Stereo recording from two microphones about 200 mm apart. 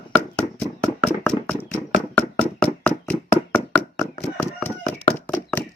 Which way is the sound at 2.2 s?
5° left (ahead or behind).